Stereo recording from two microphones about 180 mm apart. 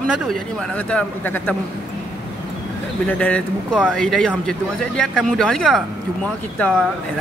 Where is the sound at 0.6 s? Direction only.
5° left (ahead or behind).